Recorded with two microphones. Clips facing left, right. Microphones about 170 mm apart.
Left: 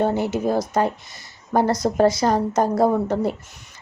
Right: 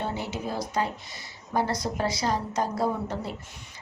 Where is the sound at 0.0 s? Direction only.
50° left (ahead or behind).